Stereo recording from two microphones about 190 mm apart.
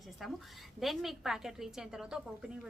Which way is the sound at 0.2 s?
Centre (ahead or behind).